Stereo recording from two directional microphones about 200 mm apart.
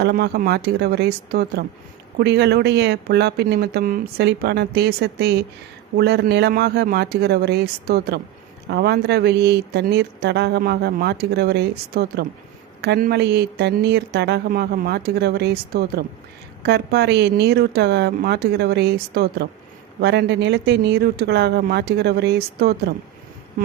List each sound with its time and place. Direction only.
0.0 s speech: 50° right (ahead or behind)